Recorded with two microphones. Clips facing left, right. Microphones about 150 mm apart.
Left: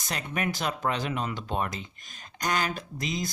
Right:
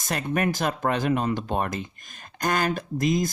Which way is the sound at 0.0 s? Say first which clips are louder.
Right 6 dB; 45° right (ahead or behind).